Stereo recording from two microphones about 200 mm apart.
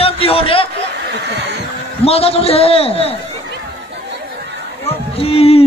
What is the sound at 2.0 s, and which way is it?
Speech, 30° left (ahead or behind).